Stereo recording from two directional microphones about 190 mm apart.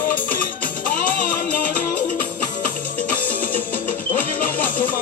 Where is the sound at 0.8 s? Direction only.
45° left (ahead or behind).